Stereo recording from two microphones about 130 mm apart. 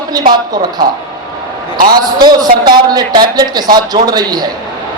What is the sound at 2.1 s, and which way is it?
A man's voice, 35° right (ahead or behind).